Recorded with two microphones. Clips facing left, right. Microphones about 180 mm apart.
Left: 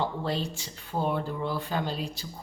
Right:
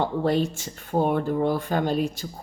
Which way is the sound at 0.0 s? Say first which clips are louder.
Right 7 dB; 55° right (ahead or behind).